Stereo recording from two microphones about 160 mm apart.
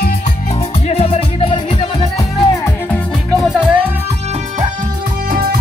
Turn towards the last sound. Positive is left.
turn(degrees=-65)  # may be behind; listen again after turning